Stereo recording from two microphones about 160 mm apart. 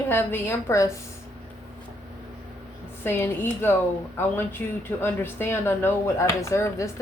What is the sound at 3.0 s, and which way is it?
Speech, 15° left (ahead or behind).